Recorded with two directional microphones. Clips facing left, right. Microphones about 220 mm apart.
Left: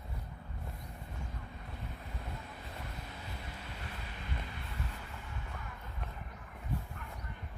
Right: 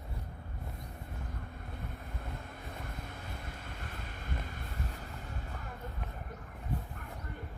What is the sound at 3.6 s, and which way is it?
Vehicle, 50° right (ahead or behind).